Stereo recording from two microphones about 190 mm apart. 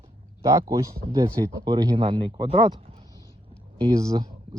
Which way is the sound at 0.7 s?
20° right (ahead or behind).